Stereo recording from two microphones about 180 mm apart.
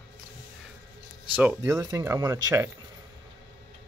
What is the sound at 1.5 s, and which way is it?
Speech, 15° right (ahead or behind).